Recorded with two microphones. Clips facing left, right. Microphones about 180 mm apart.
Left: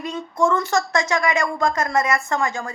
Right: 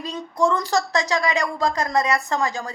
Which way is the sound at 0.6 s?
35° right (ahead or behind).